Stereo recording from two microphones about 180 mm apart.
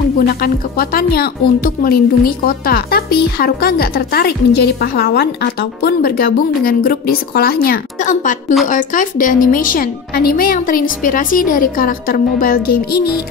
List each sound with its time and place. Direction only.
0.3 s a woman's voice: 55° left (ahead or behind)